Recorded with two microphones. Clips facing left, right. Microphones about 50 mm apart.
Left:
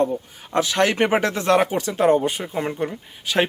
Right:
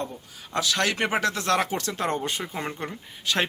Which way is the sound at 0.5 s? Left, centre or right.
Left.